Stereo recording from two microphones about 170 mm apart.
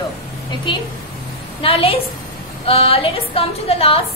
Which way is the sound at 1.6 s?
35° left (ahead or behind).